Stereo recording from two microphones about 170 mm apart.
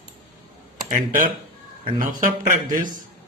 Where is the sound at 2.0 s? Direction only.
50° right (ahead or behind).